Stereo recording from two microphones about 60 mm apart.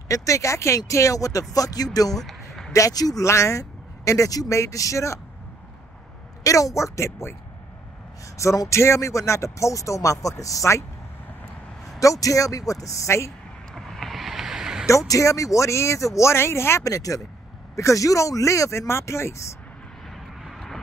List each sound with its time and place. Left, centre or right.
0.1 s speech: left
1.5 s speech: left
2.1 s a sound: centre
2.7 s speech: left
3.3 s a man's voice: left
4.6 s speech: left
6.4 s speech: left
8.5 s speech: left
12.0 s speech: left
13.7 s vehicle: centre
14.9 s speech: left
16.8 s speech: left
17.7 s speech: left
20.4 s vehicle: centre